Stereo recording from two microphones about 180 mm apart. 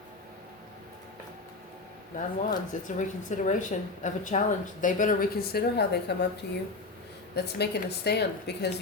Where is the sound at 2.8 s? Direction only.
45° left (ahead or behind); by 6.1 s 65° left (ahead or behind).